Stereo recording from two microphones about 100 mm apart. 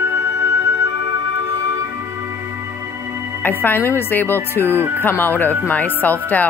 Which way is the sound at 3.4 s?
20° left (ahead or behind).